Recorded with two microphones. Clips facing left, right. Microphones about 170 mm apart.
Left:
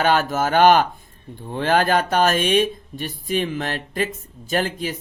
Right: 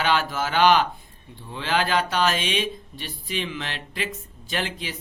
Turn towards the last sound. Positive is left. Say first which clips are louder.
# left 7 dB
turn(degrees=45)  # may be behind; listen again after turning